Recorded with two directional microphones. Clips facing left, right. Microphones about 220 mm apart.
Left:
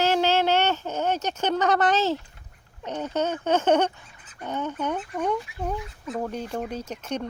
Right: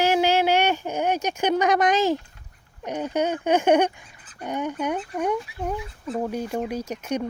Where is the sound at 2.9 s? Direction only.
10° right (ahead or behind).